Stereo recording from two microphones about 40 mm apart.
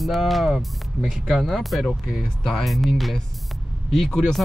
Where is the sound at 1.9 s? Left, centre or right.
Right.